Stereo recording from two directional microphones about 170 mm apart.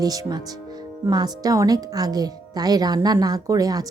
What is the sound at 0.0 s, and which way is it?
A woman's voice, 20° right (ahead or behind).